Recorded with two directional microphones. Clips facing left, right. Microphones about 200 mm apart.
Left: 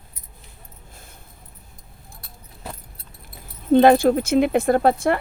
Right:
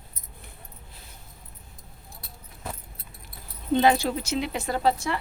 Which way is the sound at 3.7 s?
55° left (ahead or behind).